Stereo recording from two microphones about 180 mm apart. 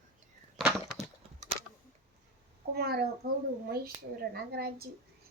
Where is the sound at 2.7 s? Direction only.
60° right (ahead or behind).